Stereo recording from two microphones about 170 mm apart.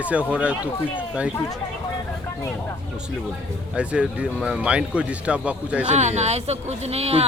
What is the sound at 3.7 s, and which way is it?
Speech, 5° right (ahead or behind).